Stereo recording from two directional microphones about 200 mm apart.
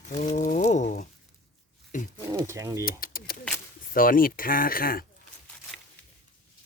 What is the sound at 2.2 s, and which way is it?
Speech, 15° right (ahead or behind).